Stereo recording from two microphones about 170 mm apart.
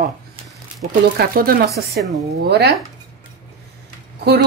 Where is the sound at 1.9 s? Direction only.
70° right (ahead or behind).